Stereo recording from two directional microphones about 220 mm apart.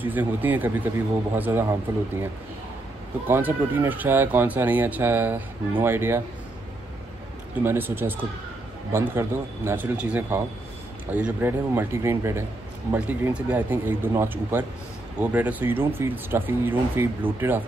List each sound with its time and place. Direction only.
0.0 s speech: 10° right (ahead or behind)
3.3 s speech: 10° right (ahead or behind)
7.6 s speech: 10° right (ahead or behind)